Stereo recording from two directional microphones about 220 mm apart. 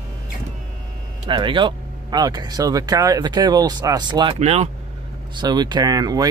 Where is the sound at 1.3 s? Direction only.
20° right (ahead or behind).